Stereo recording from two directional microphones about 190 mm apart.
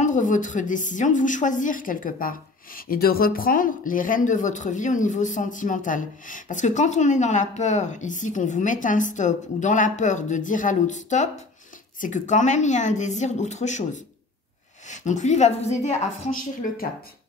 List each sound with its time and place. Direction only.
0.0 s a woman's voice: 40° left (ahead or behind)